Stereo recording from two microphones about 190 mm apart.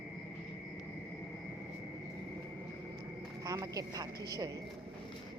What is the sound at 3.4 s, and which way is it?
Speech, 20° right (ahead or behind).